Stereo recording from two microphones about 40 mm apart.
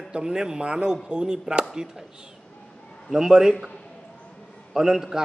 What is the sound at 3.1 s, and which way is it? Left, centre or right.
Speech, centre.